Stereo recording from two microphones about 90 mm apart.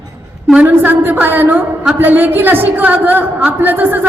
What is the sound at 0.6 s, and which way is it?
Speech, 20° right (ahead or behind).